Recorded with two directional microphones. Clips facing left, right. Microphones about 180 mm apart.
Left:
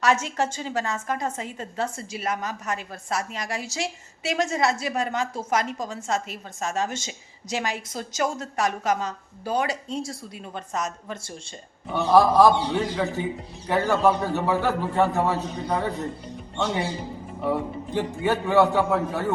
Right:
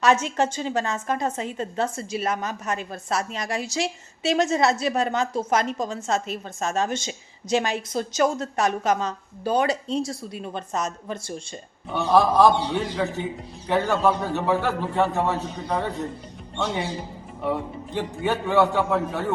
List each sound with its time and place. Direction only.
0.0 s a woman's voice: 20° right (ahead or behind)
11.9 s a man's voice: 5° left (ahead or behind)
17.4 s a man's voice: 5° left (ahead or behind)